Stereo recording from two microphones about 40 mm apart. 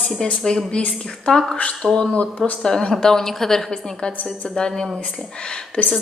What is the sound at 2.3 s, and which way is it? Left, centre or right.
Speech, left.